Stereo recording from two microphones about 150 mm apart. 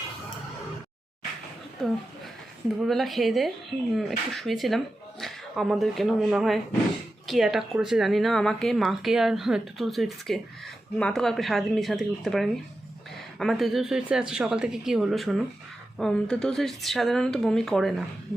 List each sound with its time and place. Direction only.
1.8 s speech: 5° left (ahead or behind)